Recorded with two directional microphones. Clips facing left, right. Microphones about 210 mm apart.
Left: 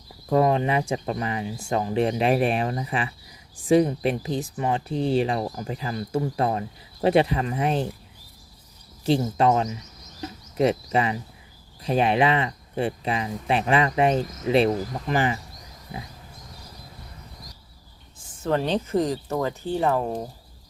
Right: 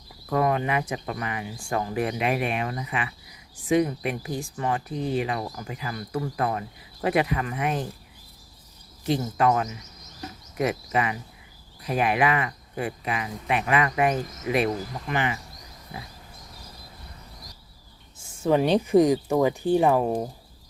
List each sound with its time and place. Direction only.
0.3 s speech: 25° left (ahead or behind)
9.0 s speech: 30° left (ahead or behind)
18.2 s speech: 10° right (ahead or behind)